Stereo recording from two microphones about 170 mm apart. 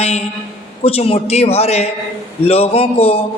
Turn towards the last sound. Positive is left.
turn(degrees=35)  # may be behind; listen again after turning